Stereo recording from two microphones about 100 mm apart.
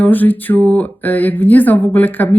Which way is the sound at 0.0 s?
15° left (ahead or behind).